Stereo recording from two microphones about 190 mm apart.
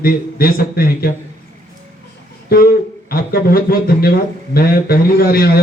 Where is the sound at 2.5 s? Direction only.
50° left (ahead or behind).